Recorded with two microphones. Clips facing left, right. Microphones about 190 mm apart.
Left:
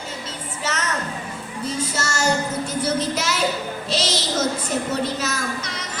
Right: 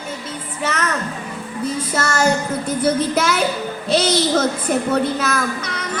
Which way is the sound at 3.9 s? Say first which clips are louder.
Right 9 dB; 55° right (ahead or behind).